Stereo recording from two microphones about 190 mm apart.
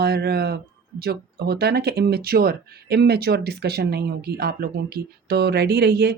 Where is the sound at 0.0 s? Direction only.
55° right (ahead or behind).